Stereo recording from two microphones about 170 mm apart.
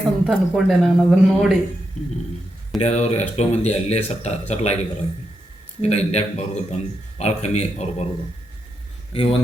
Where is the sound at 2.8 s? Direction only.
40° left (ahead or behind).